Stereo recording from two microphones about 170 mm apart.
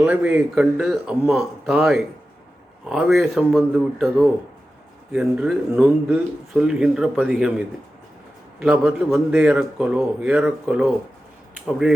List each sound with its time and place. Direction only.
0.0 s speech: 10° right (ahead or behind)
8.5 s speech: 5° right (ahead or behind)